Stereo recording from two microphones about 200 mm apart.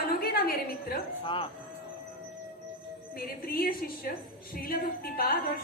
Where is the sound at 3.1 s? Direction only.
50° left (ahead or behind).